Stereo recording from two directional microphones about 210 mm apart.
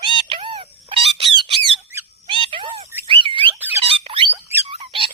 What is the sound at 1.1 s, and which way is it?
Squawk, 25° right (ahead or behind).